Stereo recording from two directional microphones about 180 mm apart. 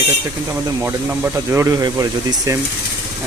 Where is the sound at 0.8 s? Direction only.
15° right (ahead or behind).